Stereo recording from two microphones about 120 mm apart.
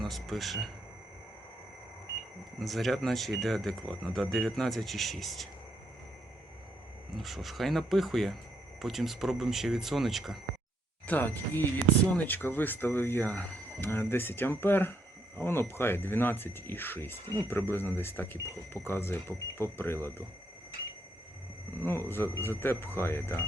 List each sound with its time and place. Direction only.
0.0 s speech: centre (ahead or behind)
2.6 s speech: centre (ahead or behind)
7.2 s speech: centre (ahead or behind)
11.0 s speech: 15° left (ahead or behind)
21.8 s speech: 20° left (ahead or behind)